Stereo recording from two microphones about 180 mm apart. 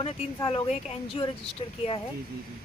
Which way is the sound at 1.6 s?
30° left (ahead or behind).